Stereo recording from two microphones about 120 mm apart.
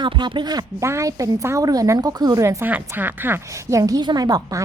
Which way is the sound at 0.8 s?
25° right (ahead or behind).